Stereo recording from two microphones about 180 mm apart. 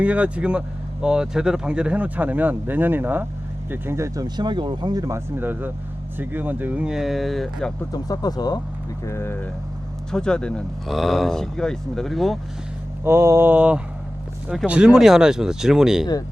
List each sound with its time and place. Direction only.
0.0 s speech: 5° right (ahead or behind)
7.9 s speech: 20° left (ahead or behind); by 12.4 s centre (ahead or behind)
13.1 s speech: 15° right (ahead or behind)